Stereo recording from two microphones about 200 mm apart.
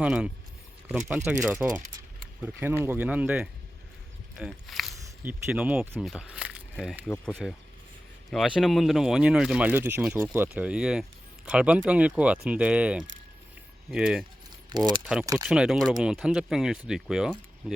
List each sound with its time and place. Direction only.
0.0 s speech: 5° right (ahead or behind)
14.7 s speech: 20° right (ahead or behind)
15.0 s speech: 5° right (ahead or behind)